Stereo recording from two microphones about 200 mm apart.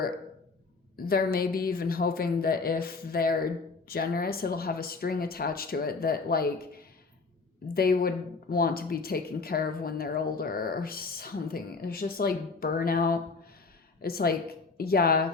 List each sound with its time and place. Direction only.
0.9 s a woman's voice: 50° left (ahead or behind)